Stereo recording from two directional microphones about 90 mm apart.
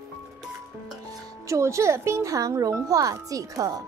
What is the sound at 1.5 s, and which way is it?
A child's voice, 35° right (ahead or behind).